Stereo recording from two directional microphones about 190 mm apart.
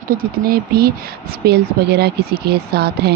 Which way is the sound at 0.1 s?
50° right (ahead or behind).